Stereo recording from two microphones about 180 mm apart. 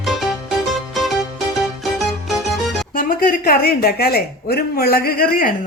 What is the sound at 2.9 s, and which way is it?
Speech, 50° left (ahead or behind).